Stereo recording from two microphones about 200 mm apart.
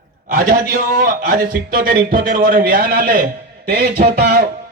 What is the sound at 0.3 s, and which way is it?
Speech, 45° right (ahead or behind).